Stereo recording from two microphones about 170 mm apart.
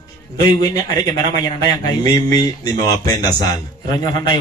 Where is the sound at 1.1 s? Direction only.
20° left (ahead or behind).